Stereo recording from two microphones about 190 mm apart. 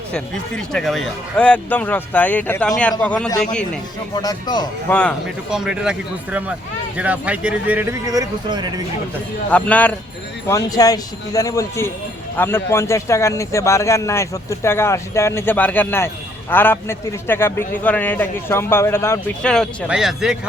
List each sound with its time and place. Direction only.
0.1 s a man's voice: 5° left (ahead or behind)
4.1 s speech: 20° left (ahead or behind)
4.9 s a man's voice: 5° left (ahead or behind)
5.5 s speech: 5° right (ahead or behind); by 8.8 s 25° right (ahead or behind)
9.5 s a man's voice: 5° left (ahead or behind)
10.5 s a man's voice: 20° left (ahead or behind); by 20.3 s centre (ahead or behind)